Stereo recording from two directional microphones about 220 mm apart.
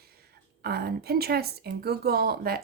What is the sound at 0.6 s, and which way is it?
Speech, 45° right (ahead or behind).